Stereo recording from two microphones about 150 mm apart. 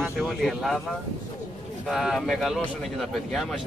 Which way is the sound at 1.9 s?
Centre (ahead or behind).